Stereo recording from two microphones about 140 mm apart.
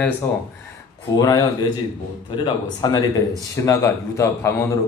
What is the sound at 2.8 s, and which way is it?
A man's voice, 25° left (ahead or behind).